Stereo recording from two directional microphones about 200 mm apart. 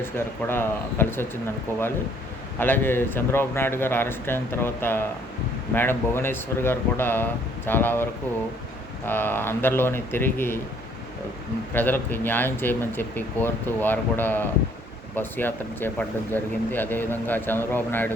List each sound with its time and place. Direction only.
0.0 s speech: 10° left (ahead or behind)
9.0 s speech: 10° left (ahead or behind)
11.7 s speech: 10° left (ahead or behind)